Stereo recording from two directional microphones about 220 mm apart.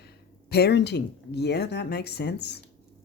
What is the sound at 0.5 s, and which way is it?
Speech, 50° left (ahead or behind).